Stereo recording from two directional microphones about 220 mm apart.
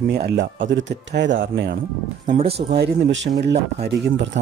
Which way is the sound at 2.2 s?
25° right (ahead or behind).